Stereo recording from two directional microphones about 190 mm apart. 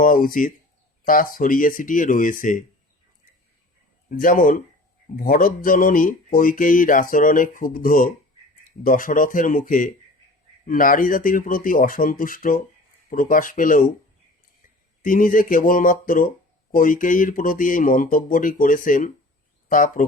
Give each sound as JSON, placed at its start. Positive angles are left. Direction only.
{"t": 0.0, "sound": "speech", "side_deg": 45}
{"t": 4.1, "sound": "speech", "side_deg": 45}
{"t": 15.0, "sound": "speech", "side_deg": 45}